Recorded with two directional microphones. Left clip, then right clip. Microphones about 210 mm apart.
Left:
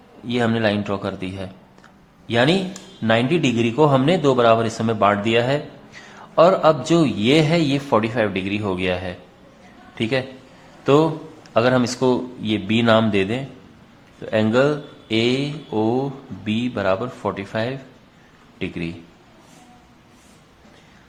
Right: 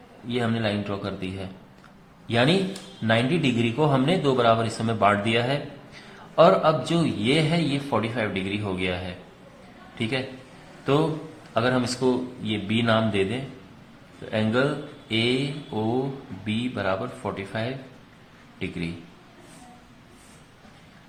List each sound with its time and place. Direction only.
0.3 s a man's voice: 25° left (ahead or behind)